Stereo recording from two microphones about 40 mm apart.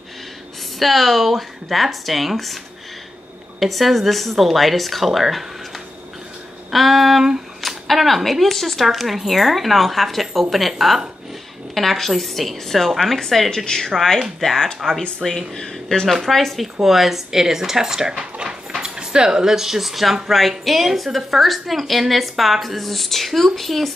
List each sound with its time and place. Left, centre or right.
0.7 s speech: centre
6.7 s speech: centre
16.1 s speech: centre